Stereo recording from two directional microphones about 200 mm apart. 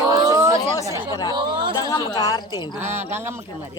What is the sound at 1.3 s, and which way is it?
Chatter, 20° right (ahead or behind).